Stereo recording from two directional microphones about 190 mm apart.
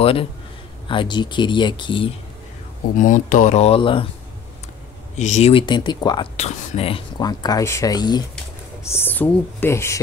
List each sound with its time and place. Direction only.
0.0 s a man's voice: 30° left (ahead or behind)
3.0 s speech: 45° left (ahead or behind); by 4.1 s 30° left (ahead or behind)
5.1 s speech: 35° left (ahead or behind); by 6.2 s 20° left (ahead or behind)
6.3 s speech: 35° left (ahead or behind); by 9.9 s 15° left (ahead or behind)